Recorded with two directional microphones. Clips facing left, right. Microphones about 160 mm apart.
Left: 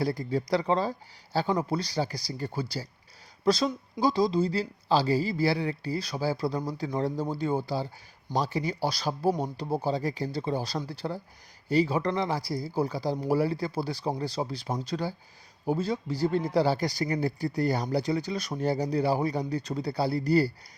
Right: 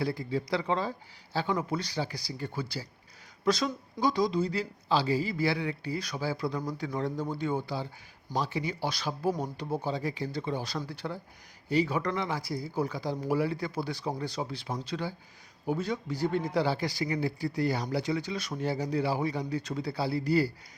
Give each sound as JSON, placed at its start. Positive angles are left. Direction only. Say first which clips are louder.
{"t": 0.0, "sound": "speech", "louder": "left 3 dB", "side_deg": 40}